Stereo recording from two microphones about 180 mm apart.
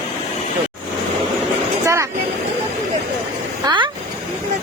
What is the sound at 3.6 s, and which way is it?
Vehicle, 25° right (ahead or behind).